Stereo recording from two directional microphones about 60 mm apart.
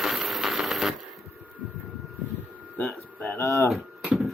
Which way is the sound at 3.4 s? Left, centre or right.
Left.